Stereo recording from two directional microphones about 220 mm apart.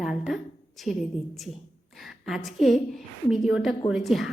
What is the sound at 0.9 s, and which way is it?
Speech, 30° left (ahead or behind).